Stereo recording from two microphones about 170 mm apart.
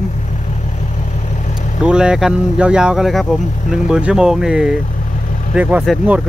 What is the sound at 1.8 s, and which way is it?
Speech, 5° right (ahead or behind).